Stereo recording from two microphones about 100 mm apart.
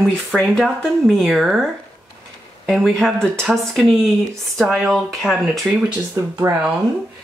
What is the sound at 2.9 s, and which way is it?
A woman's voice, 5° left (ahead or behind).